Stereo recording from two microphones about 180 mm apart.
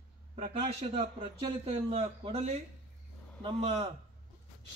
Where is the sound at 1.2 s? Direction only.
30° right (ahead or behind).